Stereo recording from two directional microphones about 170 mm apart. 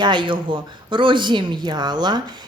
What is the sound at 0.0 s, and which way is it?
Speech, 25° right (ahead or behind).